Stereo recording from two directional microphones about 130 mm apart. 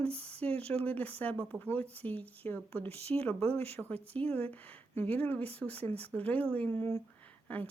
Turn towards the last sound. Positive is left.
turn(degrees=10)  # may be behind; listen again after turning